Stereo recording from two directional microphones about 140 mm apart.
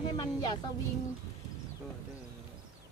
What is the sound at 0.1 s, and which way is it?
Speech, 30° left (ahead or behind).